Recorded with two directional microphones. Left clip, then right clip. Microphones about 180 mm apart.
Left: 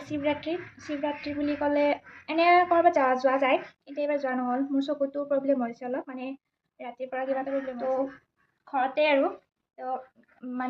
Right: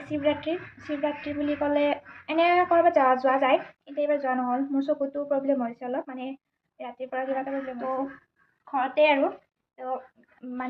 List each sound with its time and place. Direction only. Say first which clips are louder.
0.1 s a woman's voice: right 3 dB; 15° left (ahead or behind)